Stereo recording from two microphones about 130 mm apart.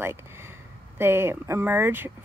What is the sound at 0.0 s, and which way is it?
Speech, 20° right (ahead or behind).